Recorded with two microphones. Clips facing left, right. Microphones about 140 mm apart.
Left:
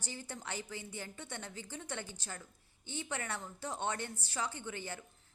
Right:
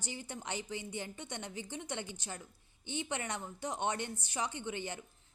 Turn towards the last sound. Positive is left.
turn(degrees=-20)  # may be behind; listen again after turning